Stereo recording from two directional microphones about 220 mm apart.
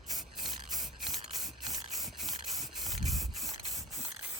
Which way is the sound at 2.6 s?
Centre (ahead or behind).